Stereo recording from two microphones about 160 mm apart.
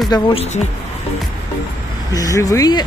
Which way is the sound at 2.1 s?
20° left (ahead or behind).